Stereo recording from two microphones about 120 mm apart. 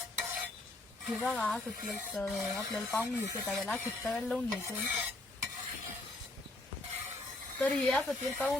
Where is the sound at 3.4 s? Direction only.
5° left (ahead or behind).